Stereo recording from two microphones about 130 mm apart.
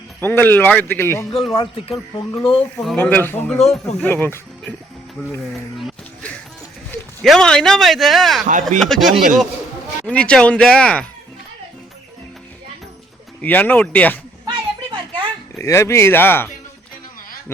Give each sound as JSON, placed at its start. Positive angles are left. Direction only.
{"t": 0.2, "sound": "speech", "side_deg": 15}
{"t": 1.5, "sound": "speech", "side_deg": 45}
{"t": 2.7, "sound": "speech", "side_deg": 5}
{"t": 7.2, "sound": "a man's voice", "side_deg": 5}
{"t": 13.4, "sound": "speech", "side_deg": 10}
{"t": 14.4, "sound": "a sound", "side_deg": -35}
{"t": 15.5, "sound": "speech", "side_deg": 20}